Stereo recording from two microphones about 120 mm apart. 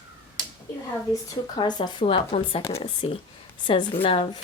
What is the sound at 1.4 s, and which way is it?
A woman's voice, 40° left (ahead or behind).